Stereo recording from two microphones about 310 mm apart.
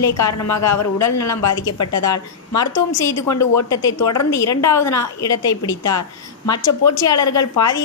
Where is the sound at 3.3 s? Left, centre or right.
Left.